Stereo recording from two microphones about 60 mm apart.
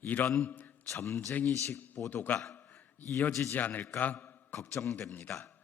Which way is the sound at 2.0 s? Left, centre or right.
Left.